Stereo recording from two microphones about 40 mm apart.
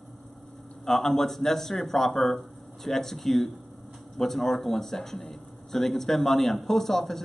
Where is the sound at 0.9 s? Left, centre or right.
Centre.